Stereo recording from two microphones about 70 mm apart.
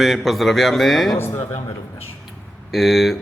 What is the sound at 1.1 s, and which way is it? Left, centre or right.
Speech, left.